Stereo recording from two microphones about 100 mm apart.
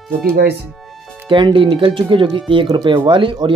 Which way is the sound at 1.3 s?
55° right (ahead or behind).